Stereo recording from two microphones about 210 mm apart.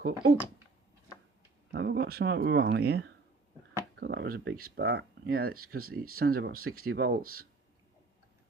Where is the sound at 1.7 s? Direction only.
55° right (ahead or behind).